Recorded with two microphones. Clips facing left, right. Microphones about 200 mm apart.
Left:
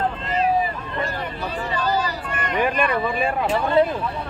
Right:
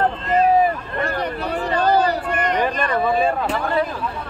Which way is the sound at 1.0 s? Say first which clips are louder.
Right 6 dB; 65° right (ahead or behind).